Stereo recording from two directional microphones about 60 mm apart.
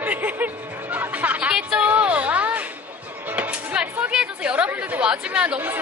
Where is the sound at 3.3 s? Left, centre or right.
Right.